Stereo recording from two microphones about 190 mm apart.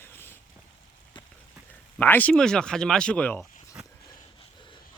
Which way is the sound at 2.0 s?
10° left (ahead or behind).